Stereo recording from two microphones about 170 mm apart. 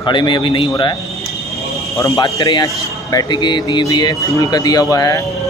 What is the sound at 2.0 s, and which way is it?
A man's voice, 20° left (ahead or behind).